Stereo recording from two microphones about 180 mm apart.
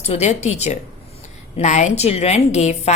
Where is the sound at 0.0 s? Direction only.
35° left (ahead or behind).